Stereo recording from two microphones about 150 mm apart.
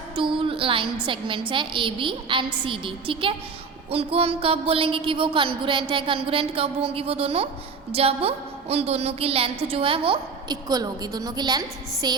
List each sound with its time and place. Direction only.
0.2 s speech: 35° right (ahead or behind)
10.7 s a woman's voice: 25° right (ahead or behind)